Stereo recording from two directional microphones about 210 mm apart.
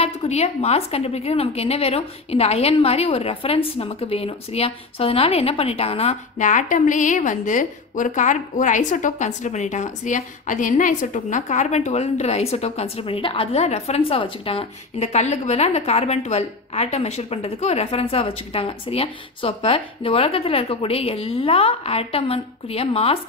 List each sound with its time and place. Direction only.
0.0 s a woman's voice: 30° left (ahead or behind)